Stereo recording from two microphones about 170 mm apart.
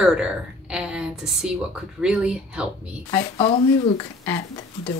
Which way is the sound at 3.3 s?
35° left (ahead or behind).